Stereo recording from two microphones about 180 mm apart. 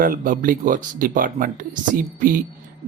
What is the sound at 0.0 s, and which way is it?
Speech, 50° right (ahead or behind).